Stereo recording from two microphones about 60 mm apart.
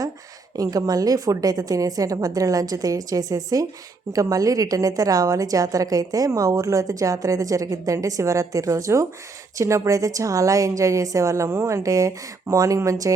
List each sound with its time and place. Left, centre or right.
0.5 s a woman's voice: right
4.1 s a woman's voice: right